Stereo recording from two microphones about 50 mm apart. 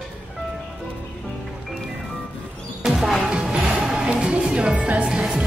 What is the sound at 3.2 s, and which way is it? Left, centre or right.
Music, right.